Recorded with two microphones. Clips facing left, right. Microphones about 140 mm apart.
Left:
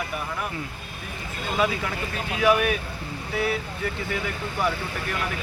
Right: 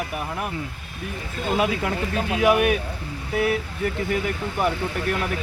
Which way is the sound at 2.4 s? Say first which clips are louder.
Right 2 dB; 45° right (ahead or behind).